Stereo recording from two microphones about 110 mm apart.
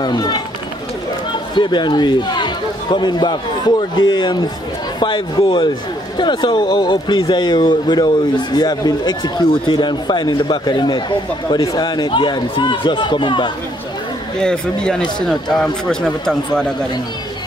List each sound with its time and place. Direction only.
0.0 s speech: 40° left (ahead or behind)
1.5 s a man's voice: 45° left (ahead or behind)
14.4 s a man's voice: 5° left (ahead or behind)